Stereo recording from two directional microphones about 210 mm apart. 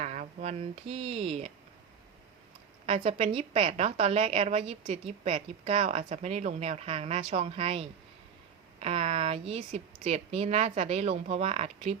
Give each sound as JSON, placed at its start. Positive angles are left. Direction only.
{"t": 0.0, "sound": "speech", "side_deg": -35}
{"t": 2.8, "sound": "a woman's voice", "side_deg": -30}